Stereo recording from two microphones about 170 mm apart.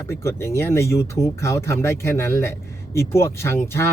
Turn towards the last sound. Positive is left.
turn(degrees=15)  # may be behind; listen again after turning